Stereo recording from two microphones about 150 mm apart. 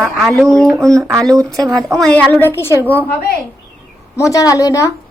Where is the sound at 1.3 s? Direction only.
20° right (ahead or behind).